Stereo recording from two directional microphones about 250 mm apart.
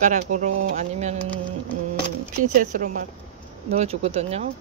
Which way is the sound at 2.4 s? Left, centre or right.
Right.